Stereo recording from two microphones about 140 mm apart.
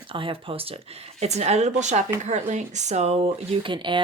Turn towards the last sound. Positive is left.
turn(degrees=-35)  # may be behind; listen again after turning